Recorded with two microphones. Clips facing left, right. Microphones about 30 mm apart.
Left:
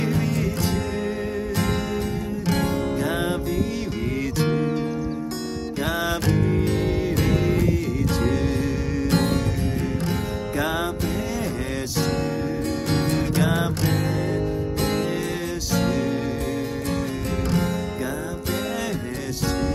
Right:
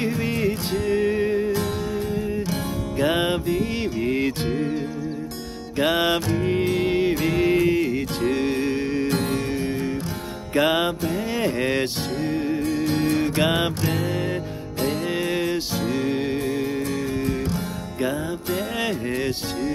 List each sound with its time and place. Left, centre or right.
0.2 s music: right
3.0 s music: right
5.8 s music: right
10.5 s music: right
13.2 s music: right
15.9 s music: right